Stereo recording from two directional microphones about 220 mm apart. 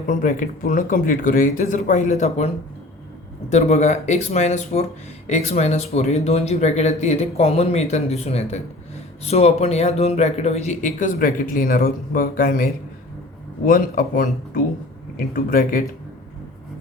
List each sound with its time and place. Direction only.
0.1 s speech: 35° left (ahead or behind)
3.5 s speech: 30° left (ahead or behind)
15.3 s speech: 40° left (ahead or behind)